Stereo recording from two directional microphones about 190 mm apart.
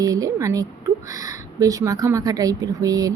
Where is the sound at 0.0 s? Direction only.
20° right (ahead or behind).